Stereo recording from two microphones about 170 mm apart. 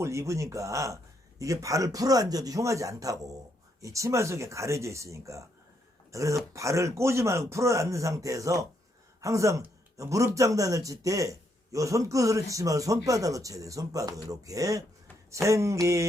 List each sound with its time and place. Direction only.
0.0 s a man's voice: 15° right (ahead or behind)